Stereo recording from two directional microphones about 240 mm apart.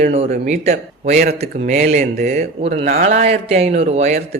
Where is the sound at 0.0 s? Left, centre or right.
Right.